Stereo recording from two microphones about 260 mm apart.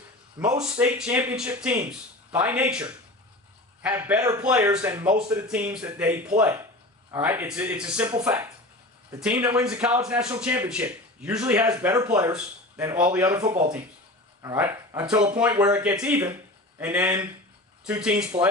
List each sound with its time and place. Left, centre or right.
0.6 s speech: centre
13.4 s speech: right
14.4 s speech: centre